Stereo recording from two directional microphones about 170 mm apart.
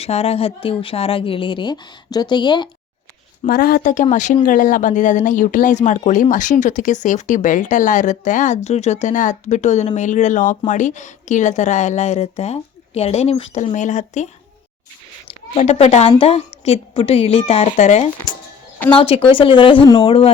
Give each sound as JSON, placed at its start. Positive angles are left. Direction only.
{"t": 0.0, "sound": "speech", "side_deg": 40}
{"t": 3.4, "sound": "speech", "side_deg": 60}
{"t": 15.5, "sound": "speech", "side_deg": 40}
{"t": 18.9, "sound": "speech", "side_deg": 30}